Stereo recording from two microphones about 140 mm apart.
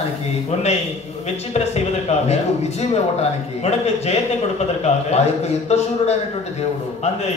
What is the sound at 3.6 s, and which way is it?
Speech, 50° left (ahead or behind).